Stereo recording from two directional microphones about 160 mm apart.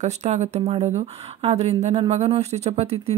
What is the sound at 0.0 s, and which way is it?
Speech, 45° right (ahead or behind).